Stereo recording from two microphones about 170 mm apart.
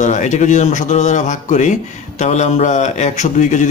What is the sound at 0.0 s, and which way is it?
Speech, 45° left (ahead or behind).